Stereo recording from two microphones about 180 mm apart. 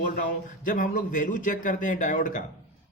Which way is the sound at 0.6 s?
45° left (ahead or behind).